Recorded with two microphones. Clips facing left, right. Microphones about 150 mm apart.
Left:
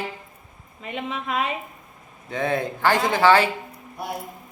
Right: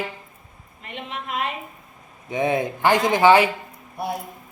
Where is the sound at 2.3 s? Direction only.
20° right (ahead or behind).